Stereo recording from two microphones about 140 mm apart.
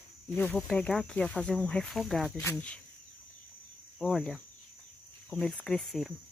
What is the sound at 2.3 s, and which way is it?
Speech, 20° left (ahead or behind).